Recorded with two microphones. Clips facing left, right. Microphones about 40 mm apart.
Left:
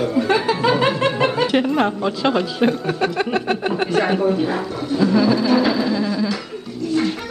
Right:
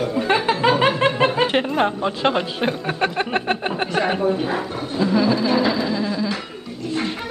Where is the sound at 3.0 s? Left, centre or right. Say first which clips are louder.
Left 1 dB; right.